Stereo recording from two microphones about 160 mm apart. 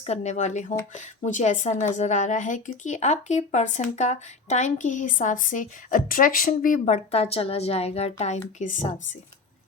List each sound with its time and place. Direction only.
0.0 s a woman's voice: 45° left (ahead or behind)